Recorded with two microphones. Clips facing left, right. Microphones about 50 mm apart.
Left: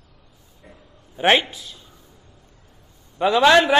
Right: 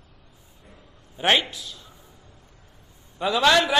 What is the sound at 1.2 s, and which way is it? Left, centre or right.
Speech, centre.